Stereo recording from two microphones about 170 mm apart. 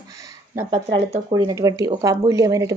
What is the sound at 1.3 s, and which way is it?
Speech, 25° right (ahead or behind).